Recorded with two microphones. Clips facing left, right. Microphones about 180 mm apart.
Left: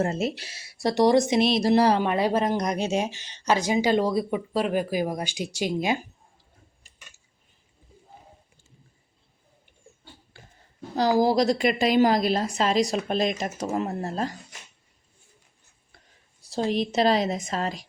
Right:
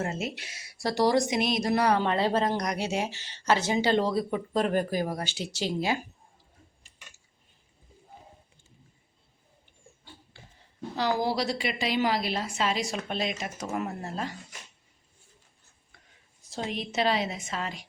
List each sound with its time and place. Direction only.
0.0 s speech: 35° left (ahead or behind)
2.0 s speech: 15° left (ahead or behind)
11.2 s a woman's voice: 40° left (ahead or behind)
15.9 s a sound: 35° left (ahead or behind)
16.6 s a woman's voice: 35° left (ahead or behind)